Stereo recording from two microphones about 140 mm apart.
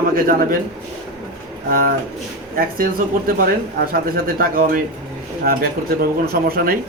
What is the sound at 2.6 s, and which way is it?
Speech, 90° right.